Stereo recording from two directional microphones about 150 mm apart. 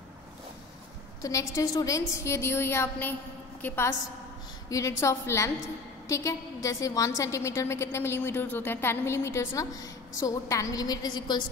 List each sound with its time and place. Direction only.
1.2 s a woman's voice: 20° left (ahead or behind)